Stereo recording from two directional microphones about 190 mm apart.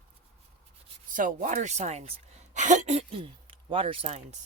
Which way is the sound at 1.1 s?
45° right (ahead or behind).